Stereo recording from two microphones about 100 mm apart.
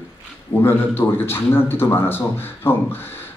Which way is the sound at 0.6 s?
25° left (ahead or behind).